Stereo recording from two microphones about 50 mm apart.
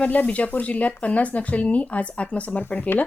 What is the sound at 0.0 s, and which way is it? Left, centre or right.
Speech, left.